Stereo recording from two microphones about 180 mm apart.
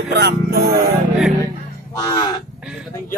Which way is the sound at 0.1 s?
65° right (ahead or behind).